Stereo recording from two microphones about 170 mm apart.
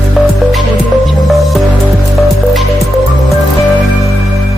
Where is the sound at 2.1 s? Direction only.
Centre (ahead or behind).